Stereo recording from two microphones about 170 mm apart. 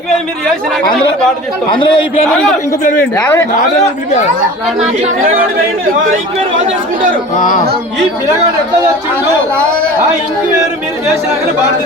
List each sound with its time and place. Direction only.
1.7 s a man's voice: 30° left (ahead or behind)
2.8 s speech: 50° left (ahead or behind)
3.2 s a man's voice: 10° left (ahead or behind)
7.3 s speech: 50° left (ahead or behind)